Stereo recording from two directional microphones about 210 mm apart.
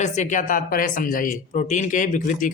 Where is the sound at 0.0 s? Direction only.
35° left (ahead or behind).